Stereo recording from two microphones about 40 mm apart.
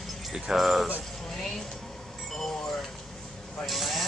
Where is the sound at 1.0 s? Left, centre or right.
Centre.